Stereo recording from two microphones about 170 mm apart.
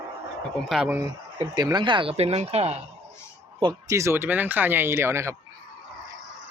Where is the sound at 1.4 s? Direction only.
25° right (ahead or behind).